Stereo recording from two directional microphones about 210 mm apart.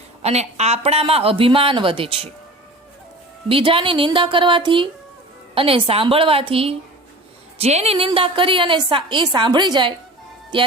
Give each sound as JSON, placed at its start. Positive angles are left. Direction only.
{"t": 0.2, "sound": "a woman's voice", "side_deg": -30}
{"t": 3.5, "sound": "a woman's voice", "side_deg": -25}